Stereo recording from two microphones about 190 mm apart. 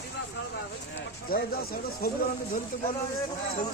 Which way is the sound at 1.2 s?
50° left (ahead or behind).